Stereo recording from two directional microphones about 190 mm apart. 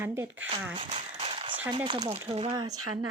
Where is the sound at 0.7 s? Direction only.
30° right (ahead or behind).